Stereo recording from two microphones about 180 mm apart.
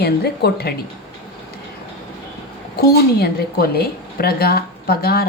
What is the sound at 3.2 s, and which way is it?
A woman's voice, 60° left (ahead or behind).